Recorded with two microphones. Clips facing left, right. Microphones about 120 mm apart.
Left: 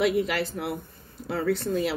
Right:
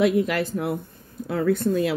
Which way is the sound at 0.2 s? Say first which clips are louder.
Right 4 dB; 45° right (ahead or behind).